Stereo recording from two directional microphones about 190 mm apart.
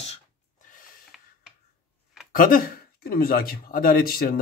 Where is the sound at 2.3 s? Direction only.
50° left (ahead or behind).